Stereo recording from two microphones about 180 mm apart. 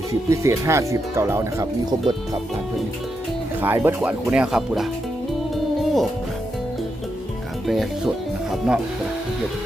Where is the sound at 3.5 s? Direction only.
10° right (ahead or behind).